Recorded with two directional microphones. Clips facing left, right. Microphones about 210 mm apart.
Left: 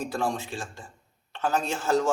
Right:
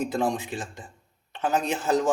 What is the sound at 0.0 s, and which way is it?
A man's voice, 20° right (ahead or behind).